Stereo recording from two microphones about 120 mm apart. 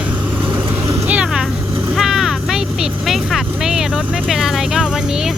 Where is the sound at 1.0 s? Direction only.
10° right (ahead or behind).